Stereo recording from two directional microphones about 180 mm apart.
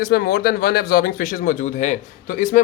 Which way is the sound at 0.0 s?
60° left (ahead or behind).